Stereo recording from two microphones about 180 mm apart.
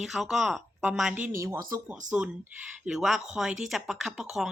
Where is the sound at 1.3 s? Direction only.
15° right (ahead or behind).